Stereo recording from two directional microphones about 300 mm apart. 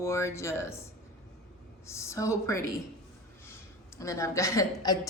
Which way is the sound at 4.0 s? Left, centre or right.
Centre.